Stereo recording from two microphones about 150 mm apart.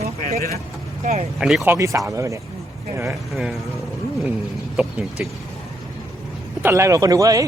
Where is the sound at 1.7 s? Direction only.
20° right (ahead or behind).